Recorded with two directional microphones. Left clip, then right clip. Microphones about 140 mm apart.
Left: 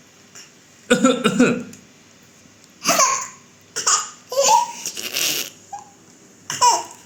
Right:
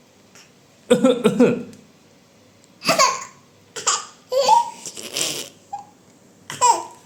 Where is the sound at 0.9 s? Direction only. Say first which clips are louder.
Right 1 dB; 35° right (ahead or behind).